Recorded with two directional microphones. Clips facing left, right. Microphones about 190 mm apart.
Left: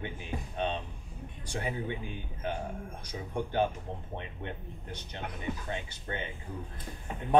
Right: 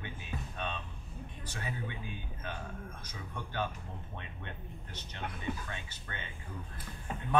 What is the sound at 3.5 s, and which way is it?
Speech, 20° left (ahead or behind).